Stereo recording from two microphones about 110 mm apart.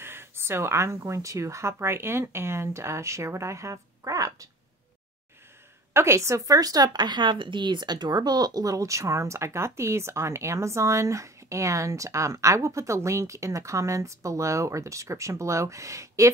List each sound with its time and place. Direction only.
0.0 s a woman's voice: 20° right (ahead or behind)
5.9 s a woman's voice: 25° right (ahead or behind)